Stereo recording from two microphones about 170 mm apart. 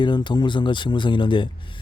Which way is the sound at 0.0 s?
25° left (ahead or behind).